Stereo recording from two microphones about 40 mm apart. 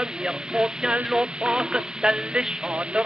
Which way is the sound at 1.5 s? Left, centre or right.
Centre.